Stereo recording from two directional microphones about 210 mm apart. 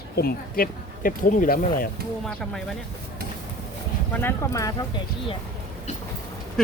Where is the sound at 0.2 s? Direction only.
45° left (ahead or behind).